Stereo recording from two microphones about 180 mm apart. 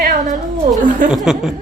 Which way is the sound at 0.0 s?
45° right (ahead or behind).